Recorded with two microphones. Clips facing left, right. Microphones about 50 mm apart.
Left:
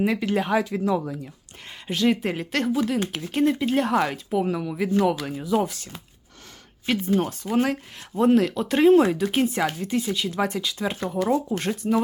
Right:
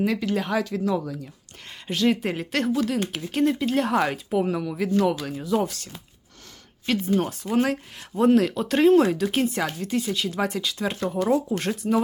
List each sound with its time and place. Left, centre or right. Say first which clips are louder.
0.0 s speech: left 1 dB; left
1.9 s speech: even; centre